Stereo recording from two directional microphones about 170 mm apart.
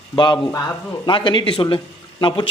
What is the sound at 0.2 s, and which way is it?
A man's voice, 25° left (ahead or behind).